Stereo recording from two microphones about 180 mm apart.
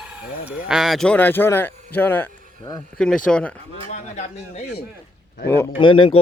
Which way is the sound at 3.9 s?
40° left (ahead or behind).